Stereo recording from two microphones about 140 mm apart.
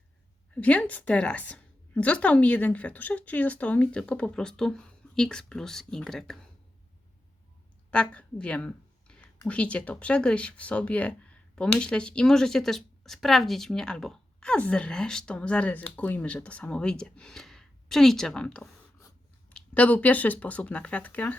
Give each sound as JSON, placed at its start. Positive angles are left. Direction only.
{"t": 0.5, "sound": "speech", "side_deg": 10}
{"t": 7.9, "sound": "speech", "side_deg": 10}